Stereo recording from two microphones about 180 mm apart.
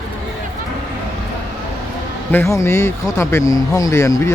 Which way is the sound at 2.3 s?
15° left (ahead or behind).